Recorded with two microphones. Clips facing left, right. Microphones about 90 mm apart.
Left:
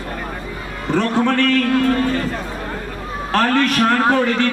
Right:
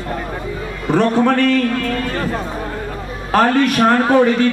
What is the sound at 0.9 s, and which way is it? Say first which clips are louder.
Speech: right 3 dB; 15° right (ahead or behind).